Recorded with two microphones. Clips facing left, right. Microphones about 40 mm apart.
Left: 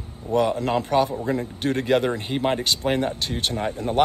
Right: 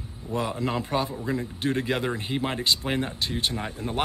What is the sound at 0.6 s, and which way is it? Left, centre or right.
Speech, left.